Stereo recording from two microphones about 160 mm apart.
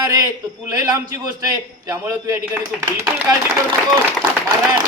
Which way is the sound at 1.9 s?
20° right (ahead or behind).